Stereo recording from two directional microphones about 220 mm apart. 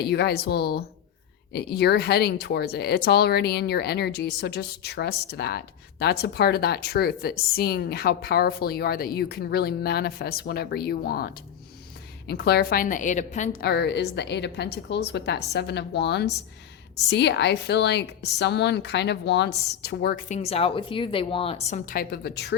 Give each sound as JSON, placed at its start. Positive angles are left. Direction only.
{"t": 0.0, "sound": "speech", "side_deg": 50}
{"t": 12.3, "sound": "speech", "side_deg": 45}
{"t": 21.8, "sound": "speech", "side_deg": 45}